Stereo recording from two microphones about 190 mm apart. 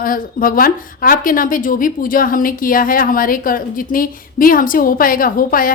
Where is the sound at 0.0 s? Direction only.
50° left (ahead or behind).